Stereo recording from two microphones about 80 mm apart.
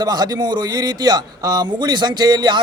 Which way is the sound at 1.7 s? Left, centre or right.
Right.